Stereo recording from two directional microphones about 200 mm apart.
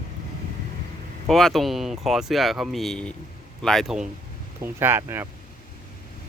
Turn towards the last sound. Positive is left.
turn(degrees=-10)  # may be behind; listen again after turning